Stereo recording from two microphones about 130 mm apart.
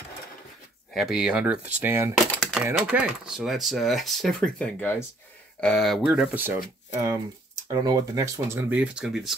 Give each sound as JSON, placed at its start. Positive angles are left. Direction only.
{"t": 0.9, "sound": "speech", "side_deg": -5}
{"t": 2.3, "sound": "typewriter", "side_deg": 0}
{"t": 2.6, "sound": "speech", "side_deg": -10}
{"t": 6.1, "sound": "speech", "side_deg": -10}